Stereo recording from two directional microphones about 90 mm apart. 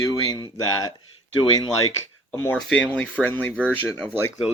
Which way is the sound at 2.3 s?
10° left (ahead or behind).